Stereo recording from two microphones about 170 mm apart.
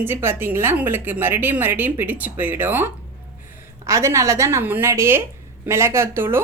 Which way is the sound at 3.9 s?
15° right (ahead or behind).